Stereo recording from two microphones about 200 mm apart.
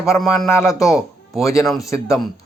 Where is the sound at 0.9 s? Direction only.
Centre (ahead or behind).